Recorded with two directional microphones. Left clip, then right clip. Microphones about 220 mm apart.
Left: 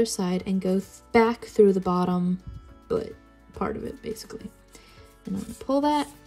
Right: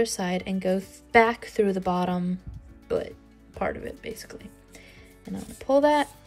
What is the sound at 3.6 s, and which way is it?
Speech, 15° left (ahead or behind).